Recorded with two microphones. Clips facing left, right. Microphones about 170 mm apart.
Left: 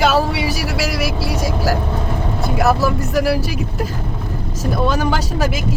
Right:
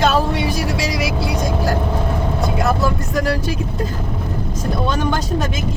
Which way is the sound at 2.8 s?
5° left (ahead or behind).